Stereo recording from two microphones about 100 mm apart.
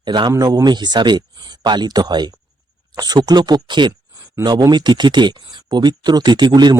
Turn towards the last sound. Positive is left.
turn(degrees=-50)  # may be behind; listen again after turning